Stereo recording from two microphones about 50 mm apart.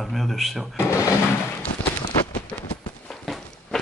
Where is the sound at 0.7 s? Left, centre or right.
Left.